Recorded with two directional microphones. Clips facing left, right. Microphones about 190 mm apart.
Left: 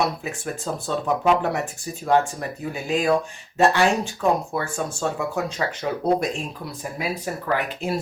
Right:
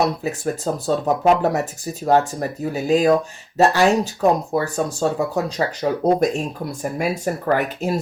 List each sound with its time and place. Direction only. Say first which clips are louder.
0.0 s speech: right 5 dB; 35° right (ahead or behind)